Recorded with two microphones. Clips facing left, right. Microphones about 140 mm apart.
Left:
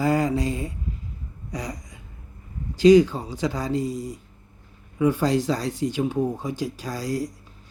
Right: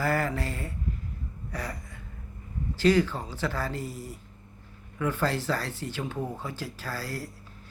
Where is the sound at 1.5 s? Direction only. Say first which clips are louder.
Left 4 dB; 15° left (ahead or behind).